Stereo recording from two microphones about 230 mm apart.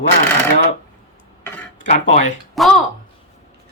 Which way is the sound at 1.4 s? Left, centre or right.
Centre.